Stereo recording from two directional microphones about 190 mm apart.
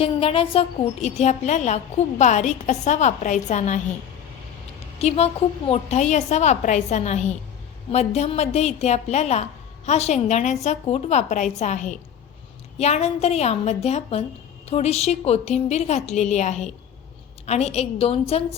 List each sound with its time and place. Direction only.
0.0 s a woman's voice: 30° left (ahead or behind)
4.9 s a woman's voice: 35° left (ahead or behind)